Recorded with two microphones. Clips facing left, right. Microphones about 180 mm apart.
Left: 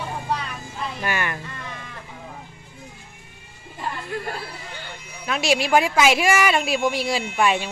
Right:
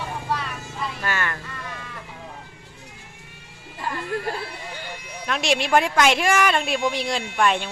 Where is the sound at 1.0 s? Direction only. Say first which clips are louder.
Left 2 dB; 15° left (ahead or behind).